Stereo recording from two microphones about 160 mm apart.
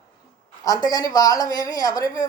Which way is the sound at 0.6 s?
25° left (ahead or behind).